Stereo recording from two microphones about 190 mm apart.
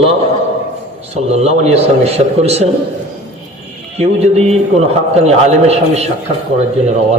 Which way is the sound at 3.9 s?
35° right (ahead or behind).